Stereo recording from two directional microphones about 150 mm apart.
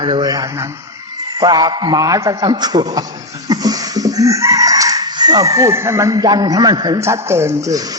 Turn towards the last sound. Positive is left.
turn(degrees=-20)  # may be behind; listen again after turning